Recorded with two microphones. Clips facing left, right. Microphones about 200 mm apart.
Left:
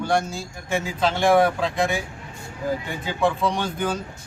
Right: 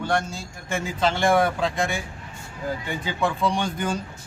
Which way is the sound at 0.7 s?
5° left (ahead or behind).